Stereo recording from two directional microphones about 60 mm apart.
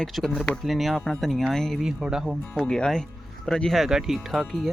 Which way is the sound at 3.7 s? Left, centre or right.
Centre.